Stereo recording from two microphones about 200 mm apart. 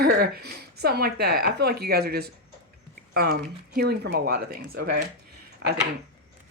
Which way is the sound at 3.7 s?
55° right (ahead or behind).